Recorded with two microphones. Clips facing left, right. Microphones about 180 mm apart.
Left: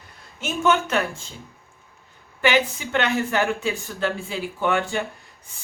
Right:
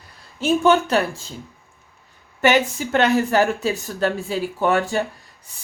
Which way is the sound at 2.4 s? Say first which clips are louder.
Right 3 dB; 45° right (ahead or behind).